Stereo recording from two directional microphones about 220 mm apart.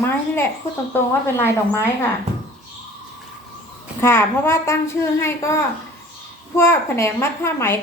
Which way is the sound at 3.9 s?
10° left (ahead or behind).